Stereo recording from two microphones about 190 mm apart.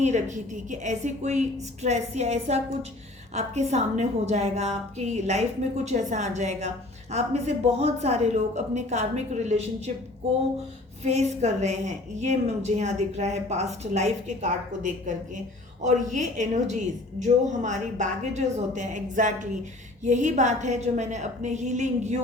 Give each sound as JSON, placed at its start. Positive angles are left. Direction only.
{"t": 0.0, "sound": "a woman's voice", "side_deg": -40}
{"t": 11.0, "sound": "a woman's voice", "side_deg": -35}